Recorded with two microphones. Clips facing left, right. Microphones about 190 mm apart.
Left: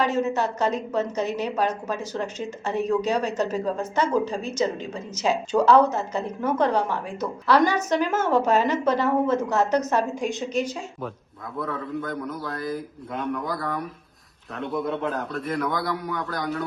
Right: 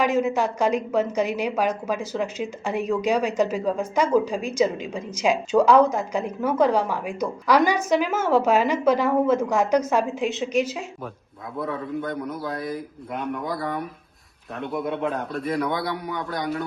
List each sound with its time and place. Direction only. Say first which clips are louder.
0.0 s a woman's voice: right 2 dB; 10° right (ahead or behind)
12.1 s speech: right 2 dB; 20° right (ahead or behind)
12.5 s speech: even; centre (ahead or behind)